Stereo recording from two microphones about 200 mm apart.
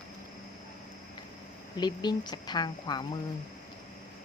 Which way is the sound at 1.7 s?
20° left (ahead or behind).